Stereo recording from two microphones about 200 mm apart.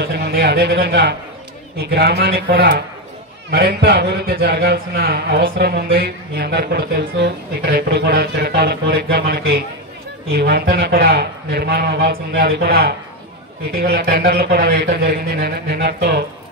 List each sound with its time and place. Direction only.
0.0 s a man's voice: 50° right (ahead or behind)